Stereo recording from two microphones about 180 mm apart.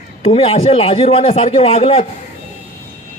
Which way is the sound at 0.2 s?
35° left (ahead or behind).